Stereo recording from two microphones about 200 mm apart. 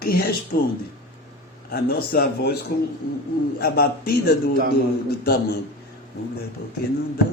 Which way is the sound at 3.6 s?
50° left (ahead or behind).